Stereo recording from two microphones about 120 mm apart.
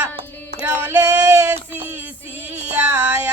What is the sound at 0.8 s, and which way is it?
Music, 25° right (ahead or behind).